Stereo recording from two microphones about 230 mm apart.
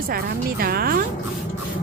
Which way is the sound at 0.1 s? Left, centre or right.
Right.